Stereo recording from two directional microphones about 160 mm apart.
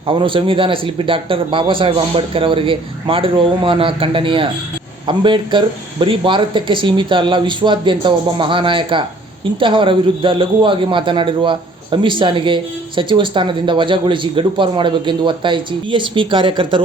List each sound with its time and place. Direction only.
0.1 s speech: 30° right (ahead or behind)